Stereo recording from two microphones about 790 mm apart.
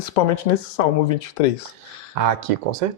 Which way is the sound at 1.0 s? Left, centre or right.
Left.